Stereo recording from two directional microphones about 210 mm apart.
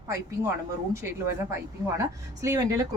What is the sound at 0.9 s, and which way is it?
A woman's voice, 15° right (ahead or behind).